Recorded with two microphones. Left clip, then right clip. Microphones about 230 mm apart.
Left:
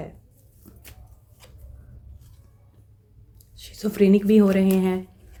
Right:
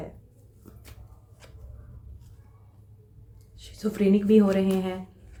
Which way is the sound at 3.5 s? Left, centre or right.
Left.